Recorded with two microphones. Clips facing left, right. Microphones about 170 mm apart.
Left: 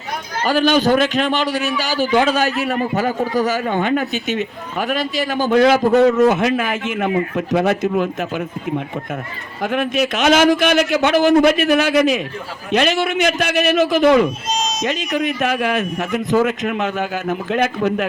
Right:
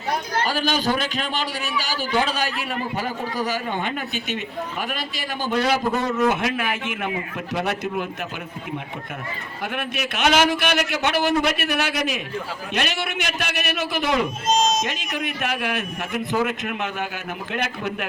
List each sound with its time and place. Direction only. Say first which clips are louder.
0.4 s a man's voice: left 11 dB; 45° left (ahead or behind)
5.9 s a man's voice: left 12 dB; 80° left
6.1 s a man's voice: left 7 dB; 45° left (ahead or behind)
9.6 s a man's voice: left 10 dB; 45° left (ahead or behind)
14.5 s a sound: right 2 dB; 50° right (ahead or behind)
15.4 s a man's voice: left 7 dB; 45° left (ahead or behind)